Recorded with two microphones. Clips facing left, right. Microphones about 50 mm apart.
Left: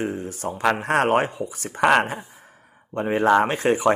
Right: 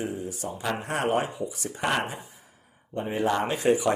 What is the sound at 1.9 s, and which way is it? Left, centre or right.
Speech, left.